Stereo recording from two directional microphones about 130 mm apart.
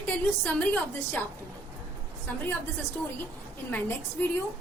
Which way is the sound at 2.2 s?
15° left (ahead or behind).